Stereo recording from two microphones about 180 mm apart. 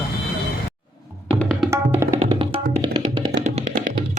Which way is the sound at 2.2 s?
30° right (ahead or behind).